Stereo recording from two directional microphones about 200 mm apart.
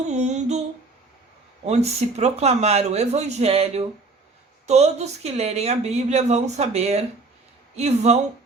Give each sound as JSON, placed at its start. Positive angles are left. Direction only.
{"t": 0.1, "sound": "speech", "side_deg": -35}
{"t": 1.6, "sound": "speech", "side_deg": -35}